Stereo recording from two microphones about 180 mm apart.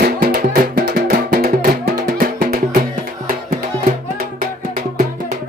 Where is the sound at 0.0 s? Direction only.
55° right (ahead or behind).